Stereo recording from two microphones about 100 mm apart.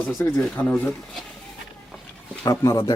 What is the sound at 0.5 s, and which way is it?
Speech, 10° left (ahead or behind).